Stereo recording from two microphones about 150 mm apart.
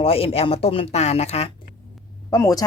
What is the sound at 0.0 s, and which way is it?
Speech, 40° left (ahead or behind).